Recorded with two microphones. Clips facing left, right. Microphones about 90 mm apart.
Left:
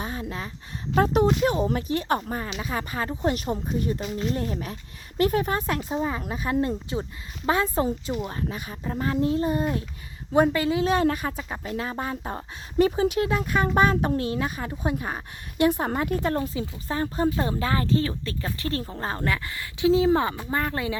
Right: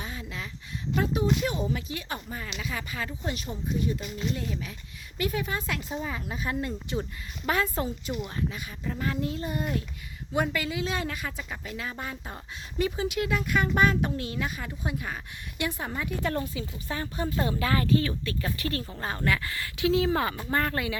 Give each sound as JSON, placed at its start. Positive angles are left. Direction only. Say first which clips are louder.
{"t": 0.0, "sound": "a sound", "louder": "left 6 dB", "side_deg": 40}
{"t": 0.9, "sound": "speech", "louder": "left 6 dB", "side_deg": 55}
{"t": 3.2, "sound": "speech", "louder": "left 10 dB", "side_deg": 50}
{"t": 15.9, "sound": "speech", "louder": "left 7 dB", "side_deg": 50}
{"t": 16.2, "sound": "speech", "louder": "left 4 dB", "side_deg": 35}
{"t": 20.3, "sound": "speech", "louder": "left 1 dB", "side_deg": 10}